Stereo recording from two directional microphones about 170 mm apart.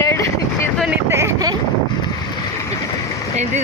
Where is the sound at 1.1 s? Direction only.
20° right (ahead or behind).